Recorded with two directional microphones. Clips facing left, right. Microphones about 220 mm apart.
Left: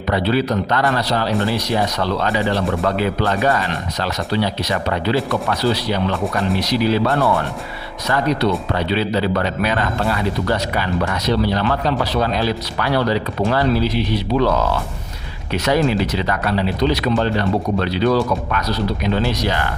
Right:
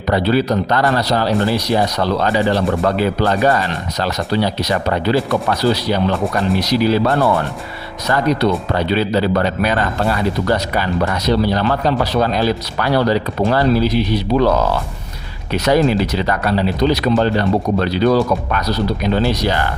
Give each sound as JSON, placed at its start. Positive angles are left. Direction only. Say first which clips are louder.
{"t": 0.1, "sound": "speech", "louder": "right 3 dB", "side_deg": -40}
{"t": 8.0, "sound": "speech", "louder": "right 2 dB", "side_deg": -40}
{"t": 15.5, "sound": "speech", "louder": "right 3 dB", "side_deg": -40}